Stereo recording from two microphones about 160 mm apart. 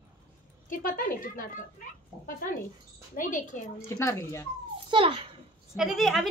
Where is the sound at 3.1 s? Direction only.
55° left (ahead or behind).